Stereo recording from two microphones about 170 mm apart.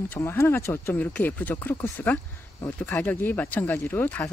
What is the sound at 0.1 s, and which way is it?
Speech, 15° left (ahead or behind).